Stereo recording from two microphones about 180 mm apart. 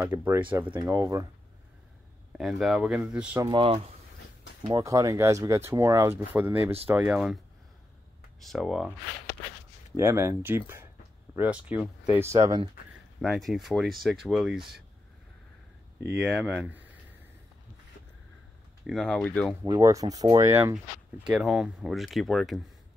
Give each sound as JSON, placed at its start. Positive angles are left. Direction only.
{"t": 0.0, "sound": "speech", "side_deg": -10}
{"t": 2.3, "sound": "speech", "side_deg": 0}
{"t": 3.3, "sound": "speech", "side_deg": -25}
{"t": 4.7, "sound": "speech", "side_deg": -20}
{"t": 8.4, "sound": "speech", "side_deg": 0}
{"t": 9.9, "sound": "speech", "side_deg": -15}
{"t": 13.2, "sound": "speech", "side_deg": 0}
{"t": 16.1, "sound": "speech", "side_deg": -5}
{"t": 18.9, "sound": "speech", "side_deg": 0}
{"t": 19.6, "sound": "speech", "side_deg": -15}
{"t": 20.7, "sound": "speech", "side_deg": -5}